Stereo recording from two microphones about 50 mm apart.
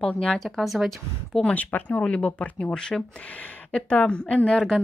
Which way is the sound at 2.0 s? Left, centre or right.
Left.